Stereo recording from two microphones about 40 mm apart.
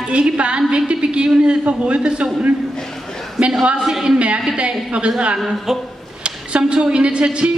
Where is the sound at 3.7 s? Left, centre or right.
Centre.